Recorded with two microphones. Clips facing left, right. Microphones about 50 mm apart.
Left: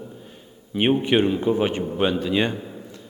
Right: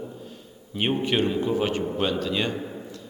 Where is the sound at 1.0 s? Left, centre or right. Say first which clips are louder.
Left 4 dB; left.